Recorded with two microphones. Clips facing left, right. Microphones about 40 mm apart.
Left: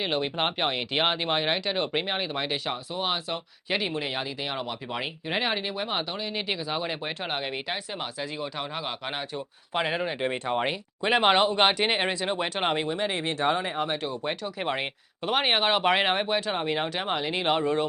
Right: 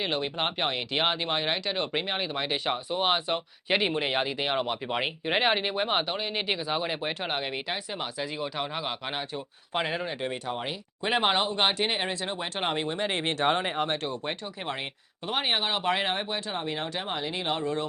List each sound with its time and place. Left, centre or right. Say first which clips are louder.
0.0 s speech: left 2 dB; centre
2.6 s speech: right 3 dB; right; by 9.9 s centre
9.9 s speech: left 3 dB; centre
10.2 s speech: left 5 dB; left
11.0 s speech: left 3 dB; centre
11.4 s speech: left 4 dB; centre
13.1 s speech: even; centre
13.4 s speech: even; right
14.6 s speech: left 5 dB; left